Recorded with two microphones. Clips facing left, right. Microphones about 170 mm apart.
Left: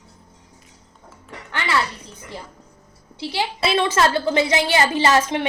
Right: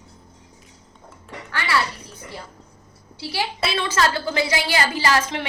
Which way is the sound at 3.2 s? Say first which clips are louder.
Left 3 dB; 20° left (ahead or behind).